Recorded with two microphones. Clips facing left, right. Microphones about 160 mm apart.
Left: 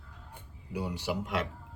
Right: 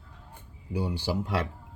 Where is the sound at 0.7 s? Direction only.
30° right (ahead or behind).